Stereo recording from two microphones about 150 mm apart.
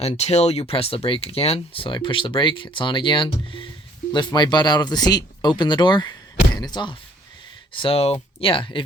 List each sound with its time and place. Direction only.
0.0 s speech: 45° left (ahead or behind)